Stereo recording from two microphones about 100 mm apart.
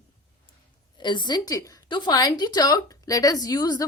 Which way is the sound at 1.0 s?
50° left (ahead or behind).